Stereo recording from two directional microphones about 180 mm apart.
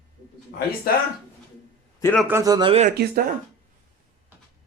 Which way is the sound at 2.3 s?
20° right (ahead or behind).